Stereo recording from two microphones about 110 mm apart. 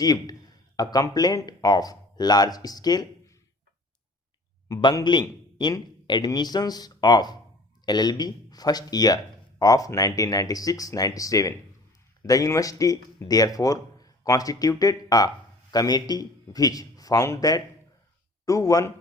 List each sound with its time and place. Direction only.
0.0 s speech: 35° left (ahead or behind)
4.7 s a man's voice: 35° left (ahead or behind)